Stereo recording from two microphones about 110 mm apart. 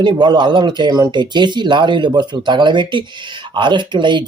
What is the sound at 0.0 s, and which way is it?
Speech, 45° right (ahead or behind).